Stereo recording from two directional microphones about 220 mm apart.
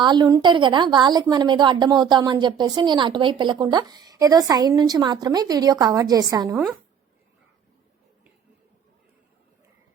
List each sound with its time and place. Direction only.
0.0 s a woman's voice: 20° right (ahead or behind)